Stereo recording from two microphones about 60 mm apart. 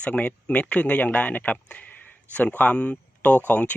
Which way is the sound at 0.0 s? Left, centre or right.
Left.